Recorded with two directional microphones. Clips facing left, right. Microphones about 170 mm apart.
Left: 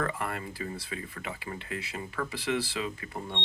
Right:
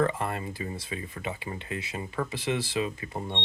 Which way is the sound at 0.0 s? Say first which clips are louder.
Right 5 dB; 25° right (ahead or behind).